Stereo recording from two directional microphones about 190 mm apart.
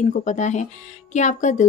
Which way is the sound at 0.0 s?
40° left (ahead or behind).